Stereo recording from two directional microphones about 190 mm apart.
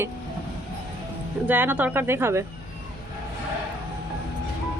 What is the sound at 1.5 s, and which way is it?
Speech, 10° right (ahead or behind).